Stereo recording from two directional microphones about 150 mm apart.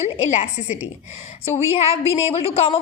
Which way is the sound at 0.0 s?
50° left (ahead or behind).